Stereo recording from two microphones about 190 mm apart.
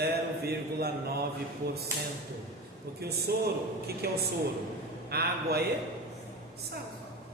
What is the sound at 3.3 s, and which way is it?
A man's voice, 55° right (ahead or behind).